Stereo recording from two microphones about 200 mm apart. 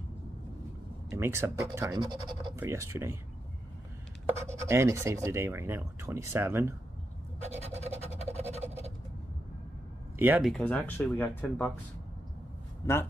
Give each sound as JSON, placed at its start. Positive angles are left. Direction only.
{"t": 1.1, "sound": "speech", "side_deg": -15}
{"t": 2.6, "sound": "speech", "side_deg": -10}
{"t": 4.4, "sound": "speech", "side_deg": -15}
{"t": 7.9, "sound": "a sound", "side_deg": -35}
{"t": 8.5, "sound": "scratch", "side_deg": -35}
{"t": 10.1, "sound": "speech", "side_deg": -10}
{"t": 10.5, "sound": "speech", "side_deg": 5}
{"t": 12.8, "sound": "a man's voice", "side_deg": 15}